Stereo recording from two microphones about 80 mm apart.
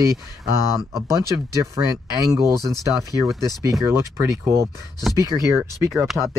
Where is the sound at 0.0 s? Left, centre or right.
Right.